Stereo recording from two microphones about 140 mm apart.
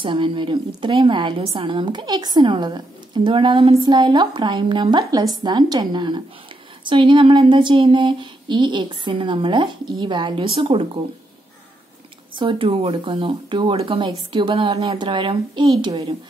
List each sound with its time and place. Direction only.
0.0 s speech: 35° right (ahead or behind)
12.4 s speech: 40° right (ahead or behind)